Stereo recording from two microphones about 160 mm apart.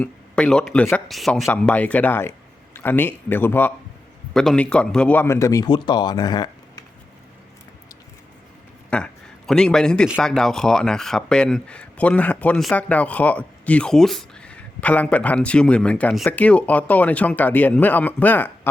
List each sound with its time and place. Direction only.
0.0 s a man's voice: 5° left (ahead or behind); by 6.8 s 25° left (ahead or behind)
8.9 s a man's voice: 5° left (ahead or behind)